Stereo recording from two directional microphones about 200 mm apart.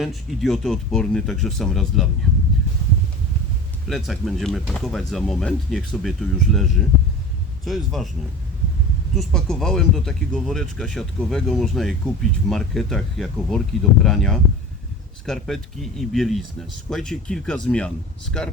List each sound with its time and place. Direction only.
0.0 s speech: centre (ahead or behind)
3.8 s speech: centre (ahead or behind)
9.1 s speech: centre (ahead or behind)